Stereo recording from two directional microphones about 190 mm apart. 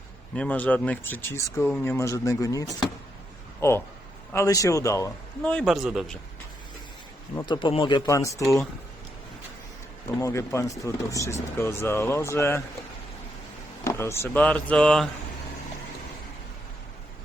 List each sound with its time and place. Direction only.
0.3 s speech: 5° left (ahead or behind)
5.4 s speech: 5° left (ahead or behind)
7.4 s speech: 25° left (ahead or behind)
10.2 s speech: 15° left (ahead or behind)
13.8 s speech: 15° left (ahead or behind)